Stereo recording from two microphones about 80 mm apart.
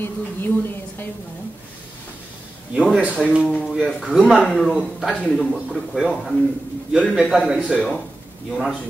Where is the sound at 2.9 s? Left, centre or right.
Centre.